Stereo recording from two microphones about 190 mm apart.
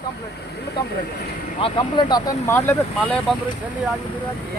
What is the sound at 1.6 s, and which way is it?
Speech, 25° left (ahead or behind).